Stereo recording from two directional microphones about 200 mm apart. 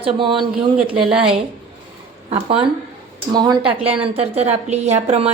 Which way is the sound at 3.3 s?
20° right (ahead or behind).